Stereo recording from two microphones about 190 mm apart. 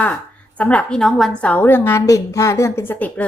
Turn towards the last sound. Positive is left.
turn(degrees=10)  # may be behind; listen again after turning